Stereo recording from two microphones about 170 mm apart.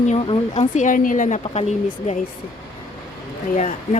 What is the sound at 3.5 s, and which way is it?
Speech, 40° left (ahead or behind).